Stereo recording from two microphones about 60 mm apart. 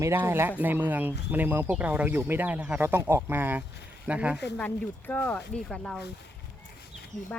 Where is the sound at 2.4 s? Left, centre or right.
Right.